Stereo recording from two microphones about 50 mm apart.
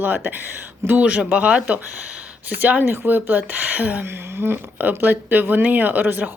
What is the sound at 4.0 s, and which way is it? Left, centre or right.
Speech, right.